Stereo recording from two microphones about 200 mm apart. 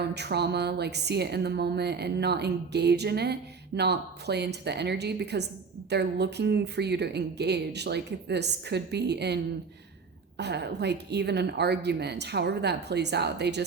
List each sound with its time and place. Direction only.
0.0 s speech: 55° right (ahead or behind)